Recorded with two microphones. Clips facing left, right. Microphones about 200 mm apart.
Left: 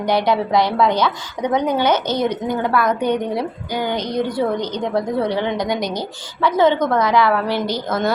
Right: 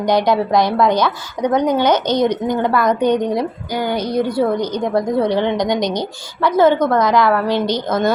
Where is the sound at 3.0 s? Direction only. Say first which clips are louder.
Right 4 dB; 15° right (ahead or behind).